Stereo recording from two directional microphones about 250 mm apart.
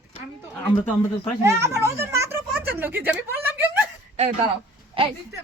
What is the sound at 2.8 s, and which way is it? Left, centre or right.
Speech, centre.